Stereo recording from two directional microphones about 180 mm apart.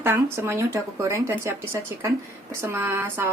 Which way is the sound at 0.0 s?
15° right (ahead or behind).